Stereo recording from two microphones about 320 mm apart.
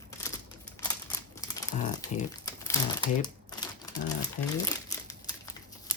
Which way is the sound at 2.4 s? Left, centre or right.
Centre.